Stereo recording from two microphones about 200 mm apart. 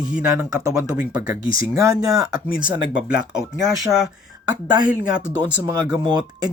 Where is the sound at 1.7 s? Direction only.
15° right (ahead or behind).